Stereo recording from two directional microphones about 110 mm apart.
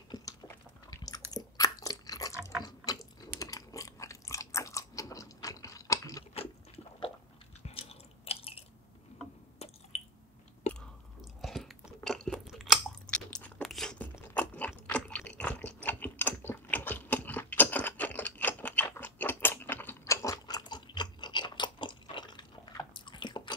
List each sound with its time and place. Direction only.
0.1 s a sound: 40° left (ahead or behind)
0.8 s chewing: 35° left (ahead or behind)
2.6 s ratchet: 35° left (ahead or behind)
3.2 s chewing: 35° left (ahead or behind)
7.6 s chewing: 65° left (ahead or behind)
9.6 s squish: 75° left (ahead or behind)
11.1 s chewing: centre (ahead or behind)
13.0 s crunch: 10° left (ahead or behind)
14.3 s ratchet: 15° left (ahead or behind)
14.9 s a sound: 10° left (ahead or behind); by 21.9 s 45° left (ahead or behind)
22.1 s biting: 40° left (ahead or behind)